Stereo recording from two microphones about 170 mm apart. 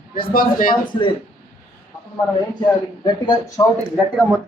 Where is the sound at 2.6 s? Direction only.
25° left (ahead or behind).